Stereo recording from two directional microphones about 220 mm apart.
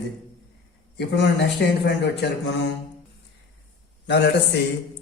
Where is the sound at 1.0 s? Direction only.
50° left (ahead or behind).